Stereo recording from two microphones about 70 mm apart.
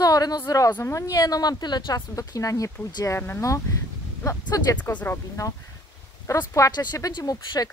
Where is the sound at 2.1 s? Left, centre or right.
Left.